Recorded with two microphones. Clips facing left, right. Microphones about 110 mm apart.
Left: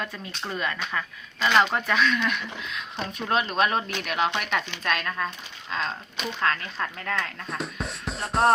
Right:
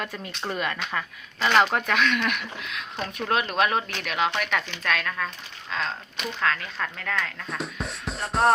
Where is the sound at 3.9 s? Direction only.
20° left (ahead or behind).